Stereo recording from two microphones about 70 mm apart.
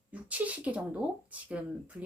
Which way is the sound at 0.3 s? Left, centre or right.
Centre.